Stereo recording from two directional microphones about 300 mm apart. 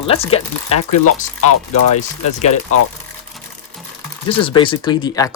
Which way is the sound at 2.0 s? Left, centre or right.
Left.